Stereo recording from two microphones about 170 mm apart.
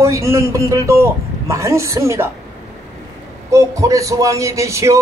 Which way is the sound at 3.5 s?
20° right (ahead or behind).